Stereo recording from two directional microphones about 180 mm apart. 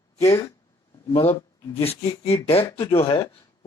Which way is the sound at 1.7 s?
35° left (ahead or behind).